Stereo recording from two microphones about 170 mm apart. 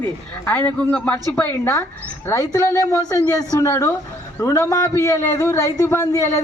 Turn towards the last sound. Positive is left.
turn(degrees=15)  # may be behind; listen again after turning